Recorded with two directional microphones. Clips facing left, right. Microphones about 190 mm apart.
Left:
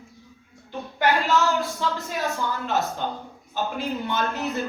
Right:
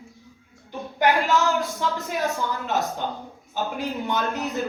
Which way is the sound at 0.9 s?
15° right (ahead or behind).